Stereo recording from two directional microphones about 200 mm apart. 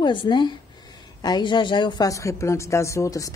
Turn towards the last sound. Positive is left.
turn(degrees=15)  # may be behind; listen again after turning